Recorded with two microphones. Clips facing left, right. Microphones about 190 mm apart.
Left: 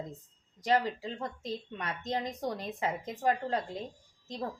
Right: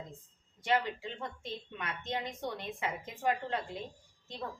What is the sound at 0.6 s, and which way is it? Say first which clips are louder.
A woman's voice: left 3 dB; 40° left (ahead or behind).